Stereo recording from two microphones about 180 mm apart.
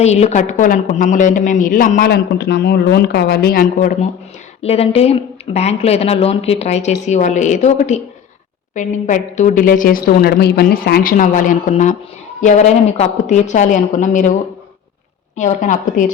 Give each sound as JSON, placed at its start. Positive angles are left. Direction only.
{"t": 0.0, "sound": "a woman's voice", "side_deg": 35}
{"t": 4.6, "sound": "a woman's voice", "side_deg": 35}
{"t": 15.4, "sound": "a woman's voice", "side_deg": 45}